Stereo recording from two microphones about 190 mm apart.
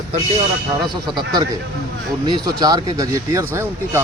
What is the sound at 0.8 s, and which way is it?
Speech, 20° right (ahead or behind).